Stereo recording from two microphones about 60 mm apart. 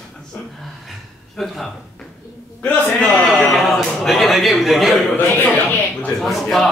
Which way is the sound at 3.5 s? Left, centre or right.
Centre.